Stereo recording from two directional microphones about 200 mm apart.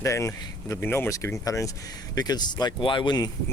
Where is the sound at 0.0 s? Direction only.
15° left (ahead or behind).